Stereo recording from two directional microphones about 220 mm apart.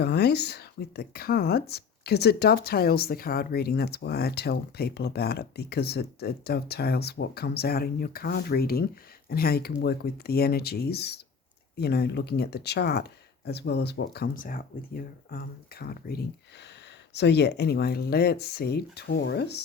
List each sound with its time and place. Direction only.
0.0 s speech: 50° left (ahead or behind)